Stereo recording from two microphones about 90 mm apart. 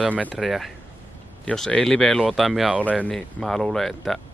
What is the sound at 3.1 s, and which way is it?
Speech, 5° left (ahead or behind).